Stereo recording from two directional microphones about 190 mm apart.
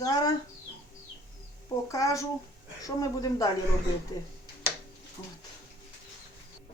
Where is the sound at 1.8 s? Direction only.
15° left (ahead or behind).